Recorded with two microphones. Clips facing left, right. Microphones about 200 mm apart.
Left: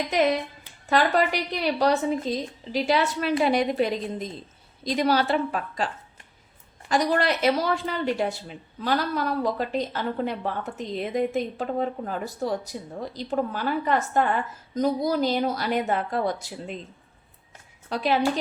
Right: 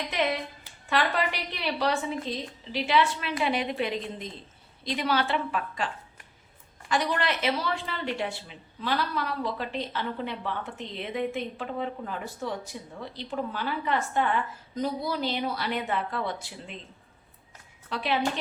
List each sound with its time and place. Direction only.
0.1 s speech: 40° left (ahead or behind)
17.8 s a woman's voice: 40° left (ahead or behind)